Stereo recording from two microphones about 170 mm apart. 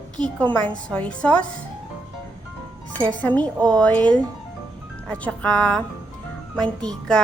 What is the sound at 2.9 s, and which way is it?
A woman's voice, 10° left (ahead or behind).